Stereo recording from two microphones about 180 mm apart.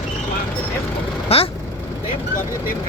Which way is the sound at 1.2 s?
30° left (ahead or behind).